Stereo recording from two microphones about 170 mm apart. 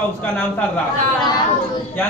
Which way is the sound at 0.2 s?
10° left (ahead or behind).